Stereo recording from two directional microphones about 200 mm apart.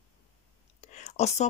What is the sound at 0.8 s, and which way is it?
Whispering, 35° left (ahead or behind).